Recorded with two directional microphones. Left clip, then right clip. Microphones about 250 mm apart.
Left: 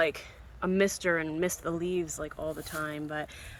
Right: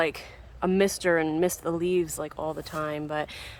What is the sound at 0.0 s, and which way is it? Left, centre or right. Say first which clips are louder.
Speech: right 1 dB; centre.